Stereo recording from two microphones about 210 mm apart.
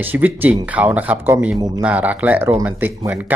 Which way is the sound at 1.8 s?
5° right (ahead or behind).